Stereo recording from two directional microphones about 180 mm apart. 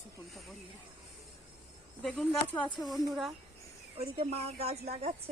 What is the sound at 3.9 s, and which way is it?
Speech, 35° right (ahead or behind).